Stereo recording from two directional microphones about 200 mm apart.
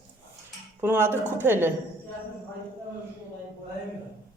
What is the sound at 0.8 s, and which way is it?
Speech, 10° right (ahead or behind).